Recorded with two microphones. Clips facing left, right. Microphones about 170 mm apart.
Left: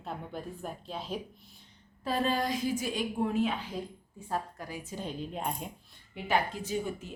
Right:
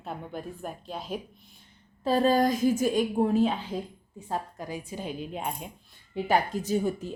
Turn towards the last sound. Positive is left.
turn(degrees=-40)  # may be behind; listen again after turning